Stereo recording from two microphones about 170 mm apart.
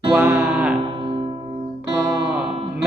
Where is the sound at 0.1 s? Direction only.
10° right (ahead or behind).